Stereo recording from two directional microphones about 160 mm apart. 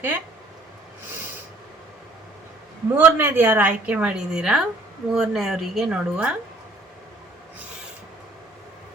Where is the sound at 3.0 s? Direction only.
15° right (ahead or behind).